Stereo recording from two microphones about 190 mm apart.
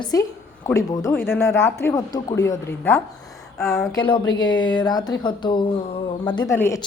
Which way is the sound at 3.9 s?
25° left (ahead or behind).